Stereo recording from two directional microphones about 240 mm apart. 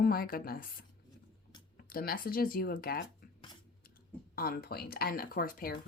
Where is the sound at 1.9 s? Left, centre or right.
Left.